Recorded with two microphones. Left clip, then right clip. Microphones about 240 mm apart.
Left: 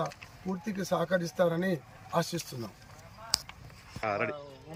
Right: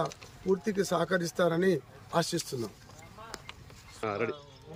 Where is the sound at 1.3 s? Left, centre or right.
Centre.